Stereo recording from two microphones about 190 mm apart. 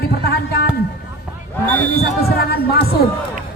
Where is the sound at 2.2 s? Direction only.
55° left (ahead or behind).